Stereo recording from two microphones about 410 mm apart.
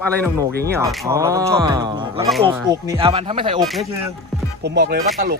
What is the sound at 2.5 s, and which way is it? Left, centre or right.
Speech, centre.